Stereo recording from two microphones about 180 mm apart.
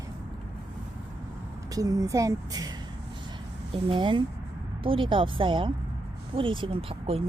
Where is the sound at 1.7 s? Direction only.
20° right (ahead or behind).